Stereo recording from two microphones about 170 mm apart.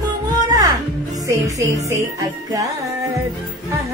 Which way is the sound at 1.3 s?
20° right (ahead or behind).